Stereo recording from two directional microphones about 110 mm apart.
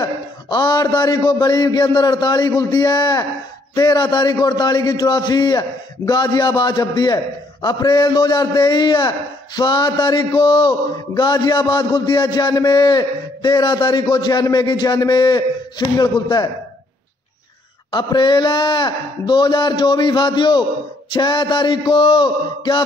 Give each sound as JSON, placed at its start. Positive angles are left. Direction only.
{"t": 0.0, "sound": "a man's voice", "side_deg": 40}
{"t": 17.9, "sound": "speech", "side_deg": 40}